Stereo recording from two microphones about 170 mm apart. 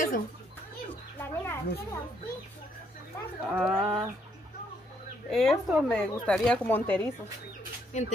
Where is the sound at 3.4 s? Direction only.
Centre (ahead or behind).